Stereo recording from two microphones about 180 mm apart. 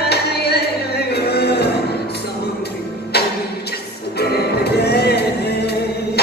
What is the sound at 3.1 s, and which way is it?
Music, 65° left (ahead or behind).